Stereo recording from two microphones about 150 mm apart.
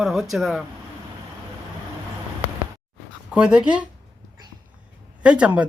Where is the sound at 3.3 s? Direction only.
5° right (ahead or behind).